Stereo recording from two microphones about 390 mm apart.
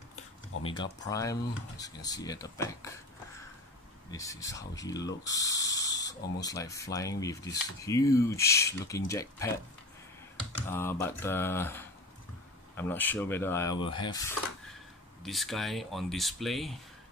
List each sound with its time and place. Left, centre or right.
0.5 s a sound: left
1.0 s speech: centre
4.1 s speech: centre
10.7 s speech: centre
15.2 s speech: centre